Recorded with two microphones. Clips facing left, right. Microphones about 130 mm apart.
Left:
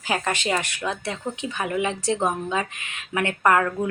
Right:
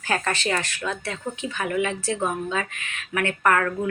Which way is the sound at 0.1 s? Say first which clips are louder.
Even; 15° left (ahead or behind).